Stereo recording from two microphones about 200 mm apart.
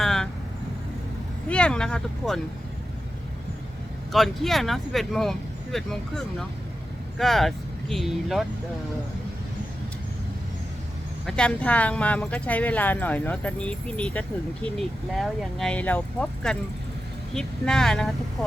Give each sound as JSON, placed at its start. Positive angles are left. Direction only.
{"t": 0.0, "sound": "vehicle", "side_deg": 0}
{"t": 1.5, "sound": "speech", "side_deg": 5}
{"t": 4.1, "sound": "speech", "side_deg": 0}
{"t": 11.3, "sound": "speech", "side_deg": 5}